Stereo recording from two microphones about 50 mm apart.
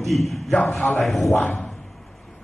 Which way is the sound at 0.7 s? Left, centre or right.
Left.